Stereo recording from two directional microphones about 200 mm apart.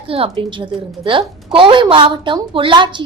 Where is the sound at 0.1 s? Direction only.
25° right (ahead or behind).